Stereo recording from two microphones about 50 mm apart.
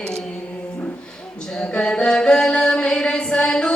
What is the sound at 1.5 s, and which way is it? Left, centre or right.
Chant, centre.